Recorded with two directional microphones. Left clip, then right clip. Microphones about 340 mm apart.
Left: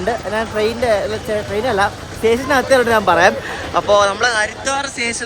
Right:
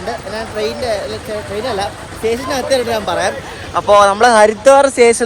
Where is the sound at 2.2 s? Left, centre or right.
Centre.